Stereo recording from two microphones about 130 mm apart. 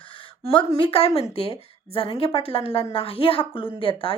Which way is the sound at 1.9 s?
50° left (ahead or behind).